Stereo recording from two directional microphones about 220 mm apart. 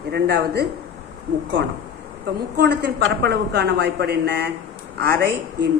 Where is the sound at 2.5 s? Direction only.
45° right (ahead or behind).